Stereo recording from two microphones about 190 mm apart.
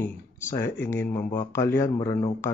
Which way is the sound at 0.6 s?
10° left (ahead or behind).